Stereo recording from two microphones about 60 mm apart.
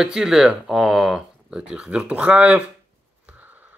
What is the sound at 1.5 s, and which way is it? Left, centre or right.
Speech, centre.